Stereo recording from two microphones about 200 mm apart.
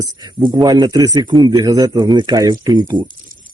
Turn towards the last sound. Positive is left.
turn(degrees=-20)  # may be behind; listen again after turning